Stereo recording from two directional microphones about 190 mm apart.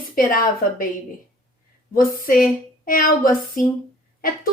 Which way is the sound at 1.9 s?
50° left (ahead or behind).